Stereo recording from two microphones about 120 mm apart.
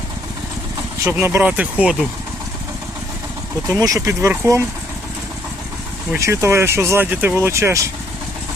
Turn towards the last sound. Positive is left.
turn(degrees=-25)  # may be behind; listen again after turning